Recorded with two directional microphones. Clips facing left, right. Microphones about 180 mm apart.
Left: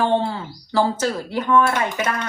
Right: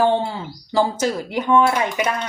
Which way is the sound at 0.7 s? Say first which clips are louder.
Right 1 dB; 15° right (ahead or behind).